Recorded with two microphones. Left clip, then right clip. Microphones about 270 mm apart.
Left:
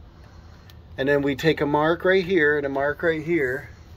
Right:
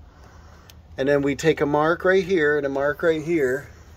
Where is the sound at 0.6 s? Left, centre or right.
Centre.